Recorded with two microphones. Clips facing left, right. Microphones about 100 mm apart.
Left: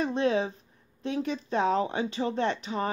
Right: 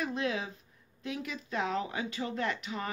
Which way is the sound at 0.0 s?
30° left (ahead or behind).